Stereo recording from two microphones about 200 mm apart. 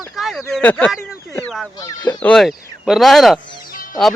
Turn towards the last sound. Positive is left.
turn(degrees=45)  # may be behind; listen again after turning